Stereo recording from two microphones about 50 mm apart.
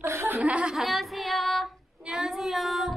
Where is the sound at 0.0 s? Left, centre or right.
Right.